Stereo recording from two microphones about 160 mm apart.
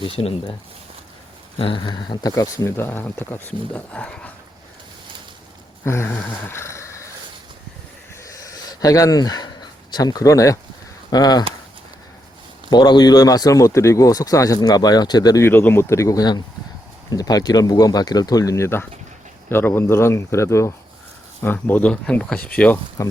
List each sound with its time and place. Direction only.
0.0 s speech: 35° left (ahead or behind)
1.5 s speech: 30° left (ahead or behind); by 4.3 s 5° left (ahead or behind)
5.8 s speech: 15° left (ahead or behind)
8.2 s a sound: 20° left (ahead or behind)
11.1 s speech: 25° left (ahead or behind)
12.7 s speech: 25° left (ahead or behind); by 22.8 s 10° left (ahead or behind)
23.0 s speech: 20° left (ahead or behind)